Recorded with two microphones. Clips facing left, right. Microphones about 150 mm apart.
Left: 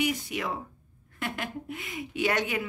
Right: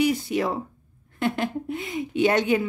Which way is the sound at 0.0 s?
35° right (ahead or behind).